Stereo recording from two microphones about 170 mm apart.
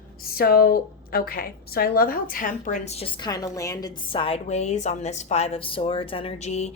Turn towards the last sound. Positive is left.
turn(degrees=40)  # may be behind; listen again after turning